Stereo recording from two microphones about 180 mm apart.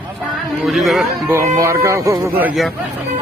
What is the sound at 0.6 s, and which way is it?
Speech, centre (ahead or behind).